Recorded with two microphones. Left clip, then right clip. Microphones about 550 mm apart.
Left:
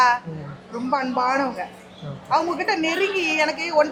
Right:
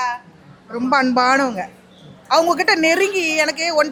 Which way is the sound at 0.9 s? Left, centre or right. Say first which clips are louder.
Right 6 dB; right.